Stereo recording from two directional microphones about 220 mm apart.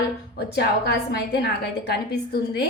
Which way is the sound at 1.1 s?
45° left (ahead or behind).